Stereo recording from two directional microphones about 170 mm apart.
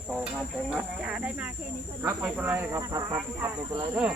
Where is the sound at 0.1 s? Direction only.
5° right (ahead or behind).